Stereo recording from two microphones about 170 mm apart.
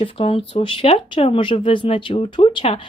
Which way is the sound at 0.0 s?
35° left (ahead or behind).